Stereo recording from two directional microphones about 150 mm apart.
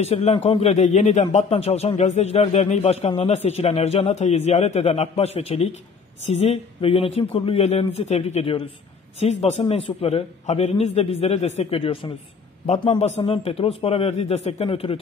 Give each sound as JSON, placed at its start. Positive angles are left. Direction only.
{"t": 0.0, "sound": "a man's voice", "side_deg": 45}